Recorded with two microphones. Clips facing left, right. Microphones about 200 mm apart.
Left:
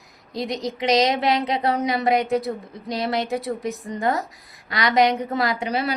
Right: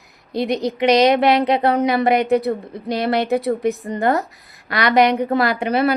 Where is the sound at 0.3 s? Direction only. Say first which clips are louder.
Right 6 dB; 60° right (ahead or behind).